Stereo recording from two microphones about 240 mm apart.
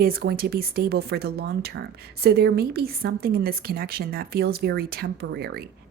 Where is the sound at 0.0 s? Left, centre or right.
Right.